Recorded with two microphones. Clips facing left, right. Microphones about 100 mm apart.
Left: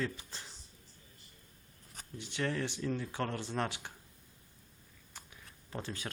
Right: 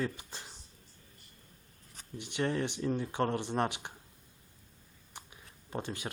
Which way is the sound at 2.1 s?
15° right (ahead or behind).